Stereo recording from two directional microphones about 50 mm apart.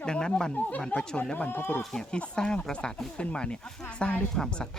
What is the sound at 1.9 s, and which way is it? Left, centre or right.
Speech, centre.